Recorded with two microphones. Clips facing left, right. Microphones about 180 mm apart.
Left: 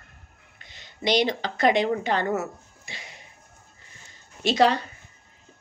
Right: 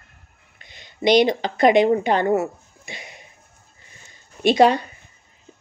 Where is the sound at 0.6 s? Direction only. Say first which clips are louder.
Right 7 dB; 15° right (ahead or behind).